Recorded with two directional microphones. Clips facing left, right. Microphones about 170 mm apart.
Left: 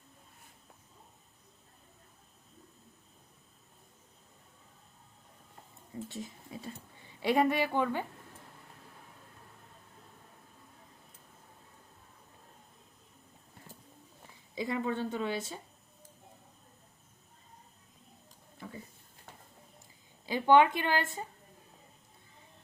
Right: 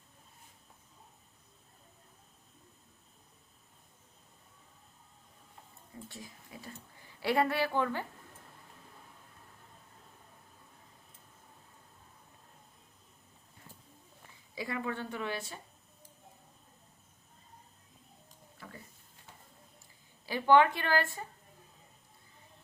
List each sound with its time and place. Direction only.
6.1 s a woman's voice: 20° left (ahead or behind)
14.5 s a woman's voice: 20° left (ahead or behind)
20.2 s a woman's voice: 20° left (ahead or behind)